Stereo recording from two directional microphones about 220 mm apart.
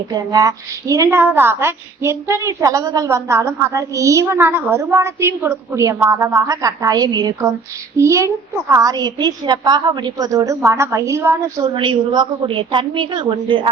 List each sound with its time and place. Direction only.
0.1 s a woman's voice: 20° right (ahead or behind)